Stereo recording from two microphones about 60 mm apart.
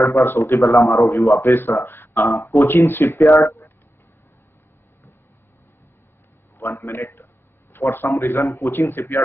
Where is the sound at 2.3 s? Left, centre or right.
Left.